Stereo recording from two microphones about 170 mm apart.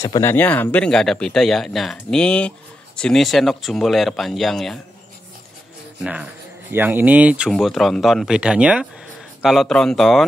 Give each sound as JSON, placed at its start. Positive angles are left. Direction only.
{"t": 0.0, "sound": "speech", "side_deg": 15}
{"t": 6.7, "sound": "speech", "side_deg": -10}